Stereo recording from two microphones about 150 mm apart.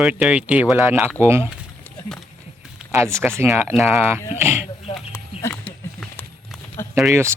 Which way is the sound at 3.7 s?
Centre (ahead or behind).